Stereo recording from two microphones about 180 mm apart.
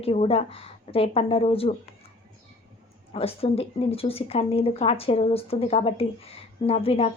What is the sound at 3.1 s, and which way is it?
Speech, 30° left (ahead or behind).